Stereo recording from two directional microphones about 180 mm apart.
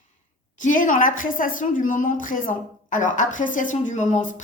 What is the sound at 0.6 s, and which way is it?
A woman's voice, 45° left (ahead or behind).